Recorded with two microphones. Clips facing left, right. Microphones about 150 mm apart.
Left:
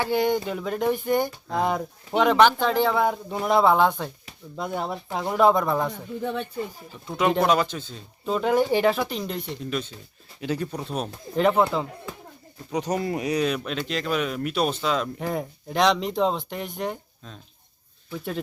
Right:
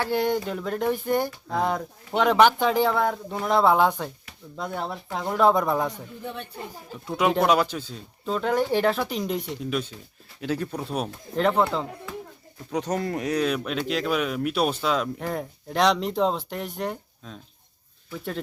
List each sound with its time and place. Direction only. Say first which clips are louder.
0.0 s speech: left 1 dB; centre (ahead or behind)
2.4 s speech: right 2 dB; 10° right (ahead or behind)
2.9 s speech: left 1 dB; 5° left (ahead or behind)
4.5 s speech: left 2 dB; 10° left (ahead or behind)
7.1 s speech: even; 5° right (ahead or behind)
8.2 s speech: left 2 dB; 10° left (ahead or behind)
9.1 s speech: right 2 dB; 5° right (ahead or behind)
11.3 s speech: left 2 dB; 5° left (ahead or behind)
12.7 s speech: left 1 dB; centre (ahead or behind)